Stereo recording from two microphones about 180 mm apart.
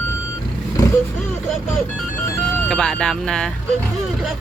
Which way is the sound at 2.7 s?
5° left (ahead or behind).